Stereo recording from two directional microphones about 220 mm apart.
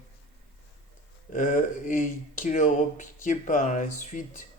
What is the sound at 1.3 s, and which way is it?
Speech, 35° left (ahead or behind).